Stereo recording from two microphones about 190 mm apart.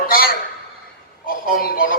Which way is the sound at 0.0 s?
50° left (ahead or behind).